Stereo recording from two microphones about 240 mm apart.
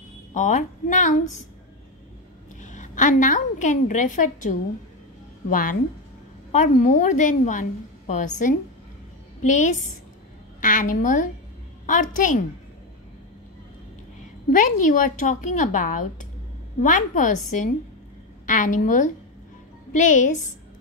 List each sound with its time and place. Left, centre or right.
0.3 s a woman's voice: left
2.6 s a woman's voice: left
14.5 s a woman's voice: left